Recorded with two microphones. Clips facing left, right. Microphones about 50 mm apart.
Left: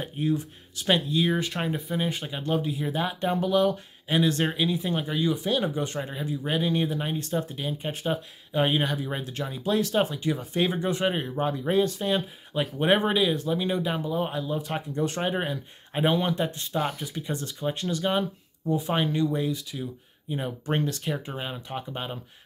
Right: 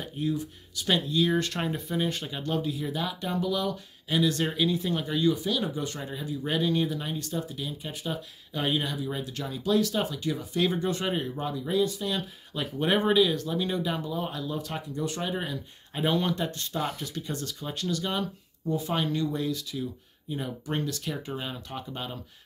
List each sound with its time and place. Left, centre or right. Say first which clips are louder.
0.0 s speech: left 3 dB; left
0.8 s speech: left 2 dB; left
4.6 s speech: even; centre
5.3 s speech: left 3 dB; left
12.5 s speech: left 3 dB; left